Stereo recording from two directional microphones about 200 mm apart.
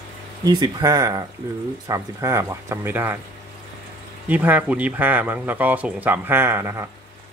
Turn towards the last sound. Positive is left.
turn(degrees=-15)  # may be behind; listen again after turning